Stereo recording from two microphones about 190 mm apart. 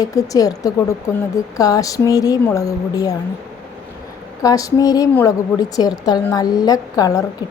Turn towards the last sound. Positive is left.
turn(degrees=20)  # may be behind; listen again after turning